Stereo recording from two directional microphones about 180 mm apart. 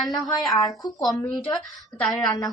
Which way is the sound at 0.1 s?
20° left (ahead or behind).